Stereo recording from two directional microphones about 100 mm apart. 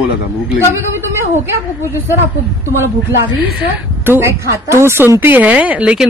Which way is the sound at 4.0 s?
25° right (ahead or behind).